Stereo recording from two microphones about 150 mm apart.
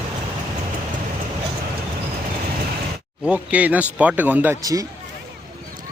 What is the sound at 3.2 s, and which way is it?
A man's voice, 10° right (ahead or behind).